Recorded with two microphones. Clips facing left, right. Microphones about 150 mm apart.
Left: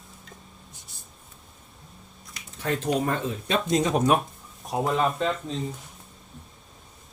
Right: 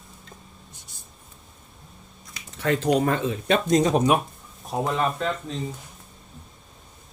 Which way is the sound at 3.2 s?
75° right (ahead or behind).